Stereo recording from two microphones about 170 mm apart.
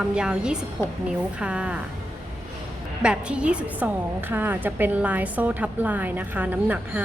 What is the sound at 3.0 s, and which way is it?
A woman's voice, 5° right (ahead or behind).